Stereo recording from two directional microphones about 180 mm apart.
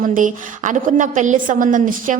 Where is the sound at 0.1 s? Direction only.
45° right (ahead or behind).